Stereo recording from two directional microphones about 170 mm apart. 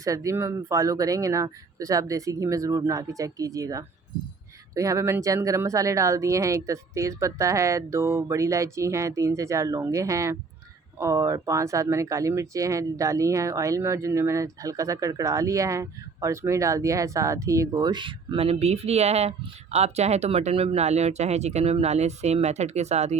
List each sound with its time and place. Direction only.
0.0 s speech: 20° right (ahead or behind); by 23.1 s 40° right (ahead or behind)